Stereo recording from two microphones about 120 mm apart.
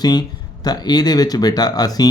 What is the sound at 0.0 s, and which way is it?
Speech, 35° left (ahead or behind).